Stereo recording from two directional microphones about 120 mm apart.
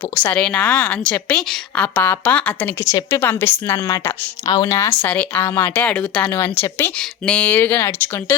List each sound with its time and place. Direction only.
0.1 s a woman's voice: 20° left (ahead or behind)
2.8 s a woman's voice: 25° left (ahead or behind); by 6.2 s 10° left (ahead or behind)
6.2 s a woman's voice: 20° left (ahead or behind)